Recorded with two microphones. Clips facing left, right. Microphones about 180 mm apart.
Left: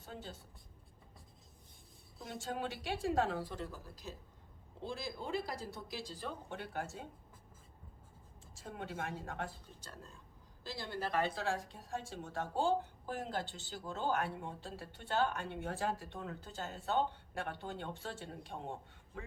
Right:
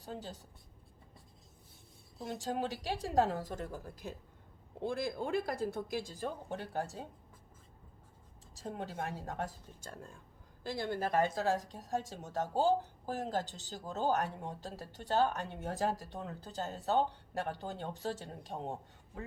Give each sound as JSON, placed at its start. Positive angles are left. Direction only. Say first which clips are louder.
{"t": 0.0, "sound": "speech", "louder": "right 4 dB", "side_deg": -40}
{"t": 2.1, "sound": "speech", "louder": "right 5 dB", "side_deg": -40}
{"t": 8.5, "sound": "speech", "louder": "right 3 dB", "side_deg": -35}